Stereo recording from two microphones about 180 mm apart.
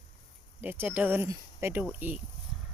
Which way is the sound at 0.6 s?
10° right (ahead or behind).